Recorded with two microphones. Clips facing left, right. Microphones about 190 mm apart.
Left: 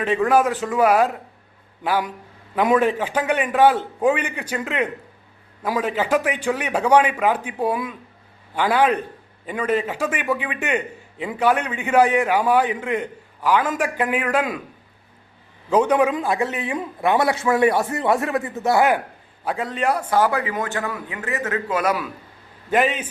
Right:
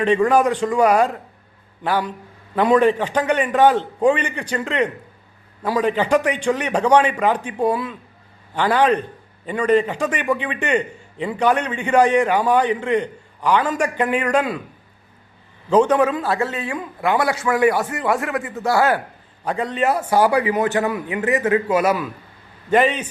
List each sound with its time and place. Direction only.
0.0 s a man's voice: centre (ahead or behind)
15.7 s a man's voice: 10° left (ahead or behind)
19.5 s a man's voice: centre (ahead or behind)
22.7 s a man's voice: 5° left (ahead or behind)